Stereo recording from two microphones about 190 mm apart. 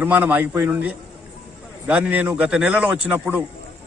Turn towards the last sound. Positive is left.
turn(degrees=-5)  # may be behind; listen again after turning